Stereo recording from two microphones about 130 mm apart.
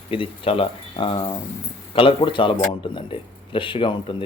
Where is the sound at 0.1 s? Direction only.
45° left (ahead or behind).